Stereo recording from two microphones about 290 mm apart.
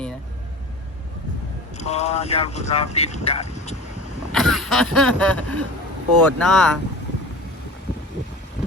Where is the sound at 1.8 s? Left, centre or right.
Left.